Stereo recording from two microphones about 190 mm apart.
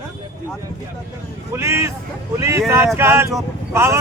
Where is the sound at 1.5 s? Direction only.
15° right (ahead or behind).